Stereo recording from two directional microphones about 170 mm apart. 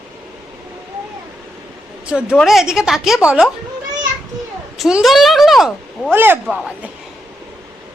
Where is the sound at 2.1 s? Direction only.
5° right (ahead or behind).